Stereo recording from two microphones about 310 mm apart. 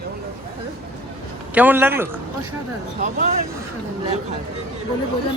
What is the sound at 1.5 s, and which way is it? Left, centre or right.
Speech, centre.